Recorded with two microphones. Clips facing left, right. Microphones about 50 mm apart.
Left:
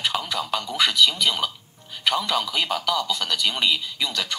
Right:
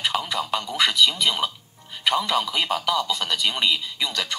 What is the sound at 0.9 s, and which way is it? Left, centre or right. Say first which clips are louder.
Speech: even; centre.